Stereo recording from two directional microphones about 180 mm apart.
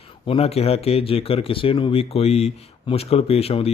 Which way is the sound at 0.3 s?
35° left (ahead or behind).